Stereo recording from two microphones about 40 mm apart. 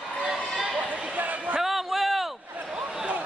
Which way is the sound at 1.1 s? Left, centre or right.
Right.